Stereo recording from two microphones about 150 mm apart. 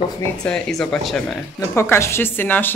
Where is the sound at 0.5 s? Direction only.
Centre (ahead or behind).